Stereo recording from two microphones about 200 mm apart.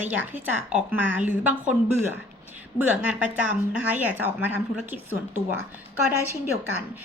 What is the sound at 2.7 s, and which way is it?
A woman's voice, 5° right (ahead or behind).